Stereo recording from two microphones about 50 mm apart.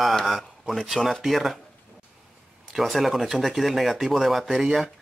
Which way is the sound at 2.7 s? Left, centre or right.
Centre.